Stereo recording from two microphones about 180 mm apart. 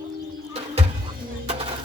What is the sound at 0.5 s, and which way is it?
Music, 35° right (ahead or behind).